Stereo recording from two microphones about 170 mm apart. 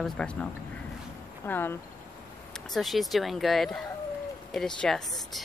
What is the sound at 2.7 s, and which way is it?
A woman's voice, centre (ahead or behind).